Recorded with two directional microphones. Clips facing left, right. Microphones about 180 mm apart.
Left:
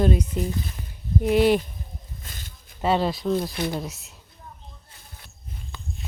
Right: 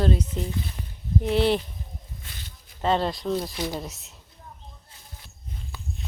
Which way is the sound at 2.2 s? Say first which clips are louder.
Left 1 dB; 45° left (ahead or behind).